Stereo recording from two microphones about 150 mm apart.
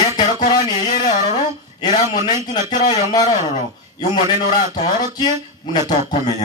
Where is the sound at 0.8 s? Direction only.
55° left (ahead or behind).